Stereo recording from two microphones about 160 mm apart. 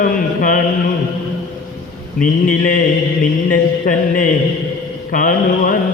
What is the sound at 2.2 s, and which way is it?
Mantra, 60° left (ahead or behind).